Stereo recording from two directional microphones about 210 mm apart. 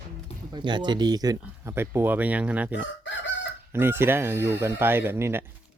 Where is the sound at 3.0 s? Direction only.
60° left (ahead or behind).